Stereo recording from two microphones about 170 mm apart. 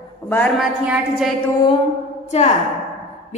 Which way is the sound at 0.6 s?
5° right (ahead or behind).